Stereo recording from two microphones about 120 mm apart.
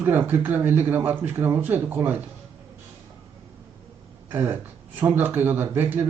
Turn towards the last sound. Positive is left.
turn(degrees=-15)  # may be behind; listen again after turning